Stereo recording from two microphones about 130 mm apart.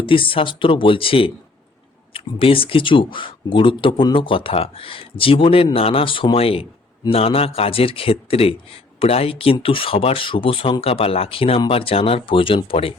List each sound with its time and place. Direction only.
0.0 s a man's voice: 40° left (ahead or behind)